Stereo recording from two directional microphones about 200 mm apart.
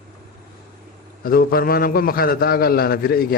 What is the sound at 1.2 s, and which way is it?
A man's voice, 50° left (ahead or behind).